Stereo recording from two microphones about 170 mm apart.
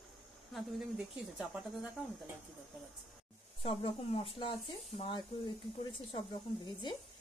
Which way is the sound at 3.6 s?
30° left (ahead or behind).